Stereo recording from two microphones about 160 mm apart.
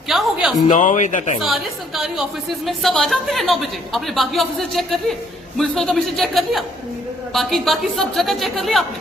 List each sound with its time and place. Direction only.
0.1 s a woman's voice: 5° right (ahead or behind)
0.7 s a man's voice: 50° left (ahead or behind)
1.4 s a woman's voice: centre (ahead or behind)